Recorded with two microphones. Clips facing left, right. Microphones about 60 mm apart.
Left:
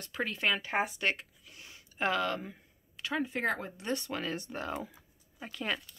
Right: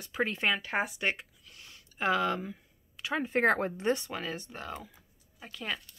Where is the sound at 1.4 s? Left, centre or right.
Centre.